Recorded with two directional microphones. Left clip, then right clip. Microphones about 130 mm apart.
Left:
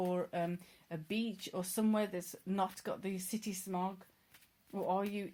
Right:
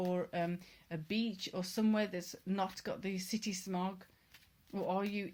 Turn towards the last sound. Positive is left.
turn(degrees=20)  # may be behind; listen again after turning